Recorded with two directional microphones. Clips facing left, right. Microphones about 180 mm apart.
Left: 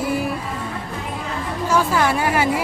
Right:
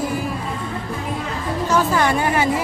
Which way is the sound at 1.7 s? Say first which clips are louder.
Even; 5° left (ahead or behind).